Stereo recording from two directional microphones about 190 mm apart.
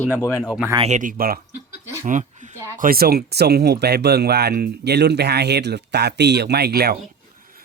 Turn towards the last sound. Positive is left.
turn(degrees=-45)  # may be behind; listen again after turning